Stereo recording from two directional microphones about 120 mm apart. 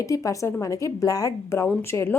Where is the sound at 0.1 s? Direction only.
25° left (ahead or behind).